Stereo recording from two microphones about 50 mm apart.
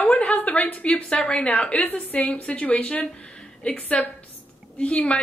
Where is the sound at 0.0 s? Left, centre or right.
Left.